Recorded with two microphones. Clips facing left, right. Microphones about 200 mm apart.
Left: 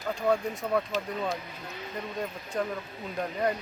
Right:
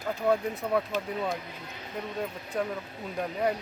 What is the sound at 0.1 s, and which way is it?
Speech, 5° right (ahead or behind).